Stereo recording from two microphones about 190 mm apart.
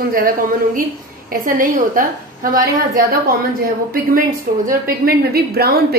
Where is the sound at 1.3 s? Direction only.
45° right (ahead or behind).